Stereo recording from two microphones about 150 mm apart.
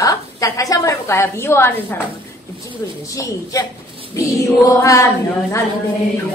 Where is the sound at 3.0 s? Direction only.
20° left (ahead or behind).